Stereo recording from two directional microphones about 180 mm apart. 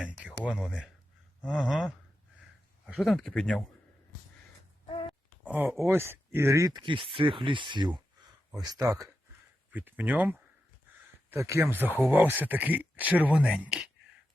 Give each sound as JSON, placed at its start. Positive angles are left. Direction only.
{"t": 0.0, "sound": "a sound", "side_deg": -5}
{"t": 0.4, "sound": "speech", "side_deg": 0}
{"t": 5.5, "sound": "speech", "side_deg": -5}